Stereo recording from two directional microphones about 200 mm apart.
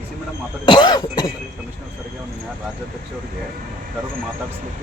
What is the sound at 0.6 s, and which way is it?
Cough, 25° left (ahead or behind).